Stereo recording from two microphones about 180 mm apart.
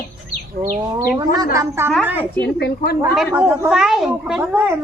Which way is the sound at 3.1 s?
5° right (ahead or behind).